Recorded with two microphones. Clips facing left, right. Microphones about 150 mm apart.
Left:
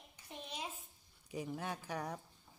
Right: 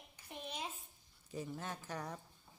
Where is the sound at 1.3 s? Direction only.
10° left (ahead or behind).